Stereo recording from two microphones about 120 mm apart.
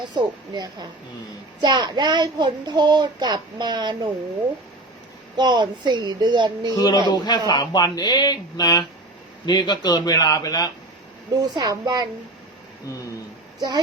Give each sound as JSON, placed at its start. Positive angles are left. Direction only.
{"t": 0.0, "sound": "a child's voice", "side_deg": -40}
{"t": 5.4, "sound": "a child's voice", "side_deg": -40}
{"t": 6.7, "sound": "speech", "side_deg": 35}
{"t": 11.4, "sound": "a child's voice", "side_deg": -35}
{"t": 13.6, "sound": "a child's voice", "side_deg": -35}